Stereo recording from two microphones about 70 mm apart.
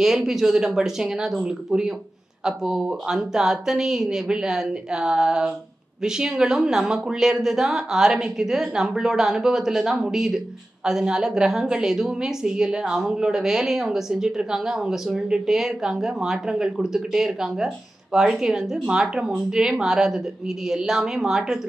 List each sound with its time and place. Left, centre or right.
0.0 s a woman's voice: centre